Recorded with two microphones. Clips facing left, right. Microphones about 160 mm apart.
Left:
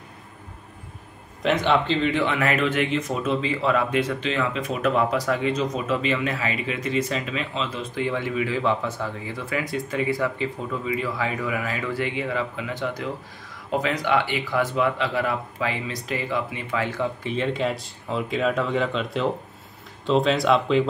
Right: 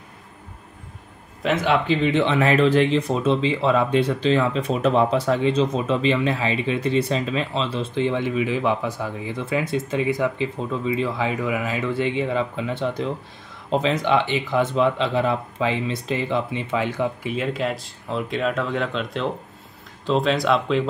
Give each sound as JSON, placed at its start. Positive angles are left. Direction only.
{"t": 1.4, "sound": "speech", "side_deg": -5}
{"t": 1.9, "sound": "speech", "side_deg": -20}